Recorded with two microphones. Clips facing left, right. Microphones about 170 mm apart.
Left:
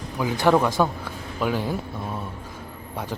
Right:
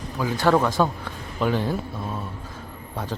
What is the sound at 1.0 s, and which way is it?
A man's voice, 5° left (ahead or behind).